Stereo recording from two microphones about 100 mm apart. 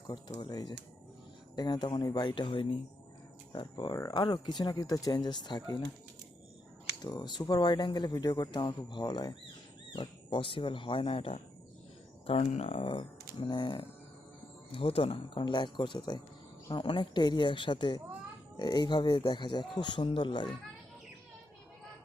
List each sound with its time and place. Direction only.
0.1 s speech: 45° left (ahead or behind)
7.0 s speech: 45° left (ahead or behind)
14.7 s speech: 70° left (ahead or behind); by 20.5 s 55° left (ahead or behind)